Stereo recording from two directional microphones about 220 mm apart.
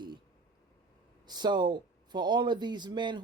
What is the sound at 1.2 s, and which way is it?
Speech, 20° right (ahead or behind).